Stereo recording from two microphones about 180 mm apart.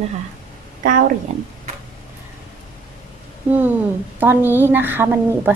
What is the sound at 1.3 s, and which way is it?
Speech, 40° right (ahead or behind).